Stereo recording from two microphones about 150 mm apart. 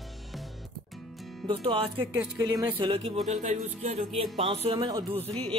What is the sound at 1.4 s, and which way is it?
Speech, 35° right (ahead or behind).